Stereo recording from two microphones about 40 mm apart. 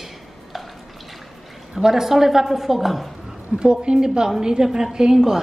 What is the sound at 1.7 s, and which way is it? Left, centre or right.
A woman's voice, centre.